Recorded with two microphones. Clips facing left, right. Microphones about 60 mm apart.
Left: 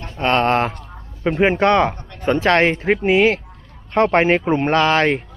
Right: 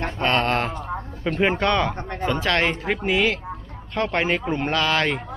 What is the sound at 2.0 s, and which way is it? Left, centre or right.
Speech, right.